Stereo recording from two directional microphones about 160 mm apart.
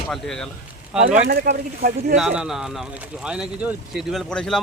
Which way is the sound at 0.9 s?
10° right (ahead or behind).